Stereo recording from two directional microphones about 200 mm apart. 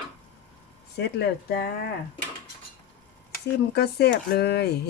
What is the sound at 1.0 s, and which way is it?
Speech, 55° left (ahead or behind).